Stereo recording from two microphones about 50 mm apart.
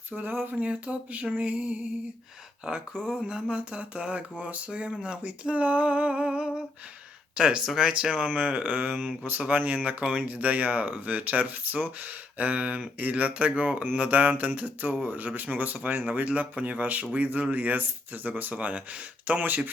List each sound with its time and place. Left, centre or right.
0.1 s speech: right
0.6 s speech: right